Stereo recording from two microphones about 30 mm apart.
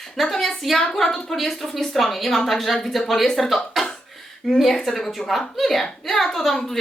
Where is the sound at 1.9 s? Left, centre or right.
Centre.